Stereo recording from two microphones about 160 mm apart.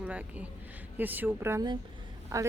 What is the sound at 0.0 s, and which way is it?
Speech, 10° right (ahead or behind).